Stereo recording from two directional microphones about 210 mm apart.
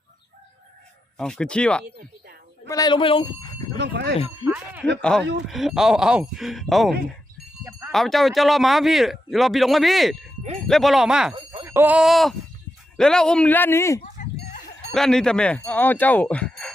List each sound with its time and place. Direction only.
1.1 s speech: 5° left (ahead or behind)
1.8 s a woman's voice: 50° right (ahead or behind)
2.6 s speech: 20° left (ahead or behind)
3.8 s speech: 55° right (ahead or behind)
4.4 s speech: 10° right (ahead or behind)
4.9 s speech: 5° left (ahead or behind)
7.6 s a sound: 10° right (ahead or behind)
7.9 s speech: centre (ahead or behind)
14.0 s livestock: 35° left (ahead or behind)
14.9 s speech: centre (ahead or behind)